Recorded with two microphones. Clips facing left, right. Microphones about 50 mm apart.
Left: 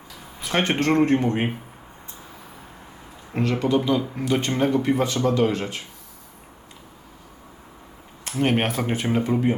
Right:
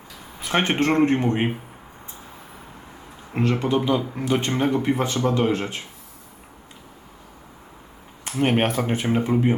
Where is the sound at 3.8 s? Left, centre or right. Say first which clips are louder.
Even; centre; by 5.8 s right.